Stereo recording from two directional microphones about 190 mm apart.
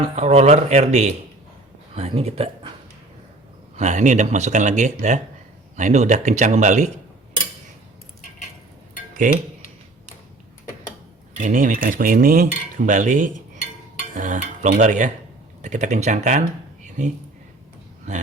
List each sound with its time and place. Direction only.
0.0 s speech: 35° right (ahead or behind)
3.8 s speech: 40° right (ahead or behind)
9.2 s cutlery: 45° right (ahead or behind)
11.4 s cutlery: 45° right (ahead or behind)
14.1 s speech: 45° right (ahead or behind)
18.1 s speech: 40° right (ahead or behind)